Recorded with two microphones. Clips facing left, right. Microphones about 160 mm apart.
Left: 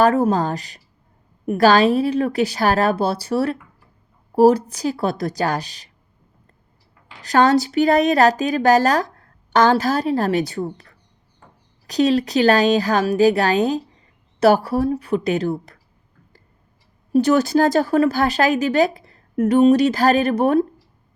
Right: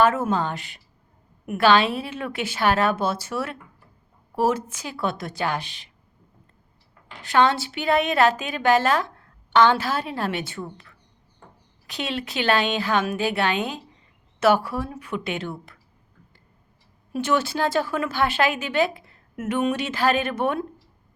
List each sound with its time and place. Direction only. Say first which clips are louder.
0.0 s a woman's voice: left 4 dB; 35° left (ahead or behind)
7.2 s a woman's voice: left 5 dB; 40° left (ahead or behind)
17.1 s a woman's voice: left 8 dB; 40° left (ahead or behind)